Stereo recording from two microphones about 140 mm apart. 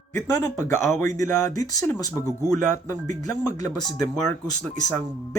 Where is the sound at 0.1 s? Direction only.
20° left (ahead or behind).